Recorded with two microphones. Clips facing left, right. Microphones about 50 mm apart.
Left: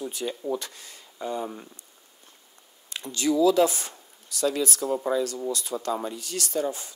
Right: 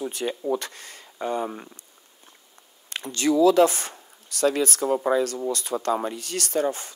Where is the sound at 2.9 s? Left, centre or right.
Right.